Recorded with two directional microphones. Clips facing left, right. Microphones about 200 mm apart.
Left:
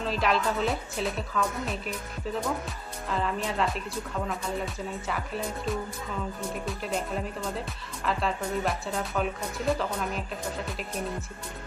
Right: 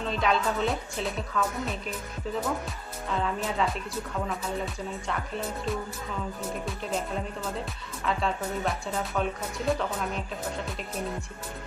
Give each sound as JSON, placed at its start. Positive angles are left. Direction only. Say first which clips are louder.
{"t": 0.0, "sound": "speech", "louder": "even", "side_deg": 0}
{"t": 5.0, "sound": "speech", "louder": "even", "side_deg": 5}